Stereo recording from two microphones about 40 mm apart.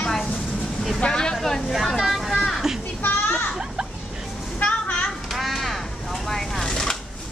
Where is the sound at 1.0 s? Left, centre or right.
Centre.